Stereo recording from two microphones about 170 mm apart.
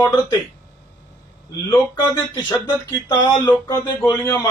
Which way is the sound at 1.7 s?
20° left (ahead or behind).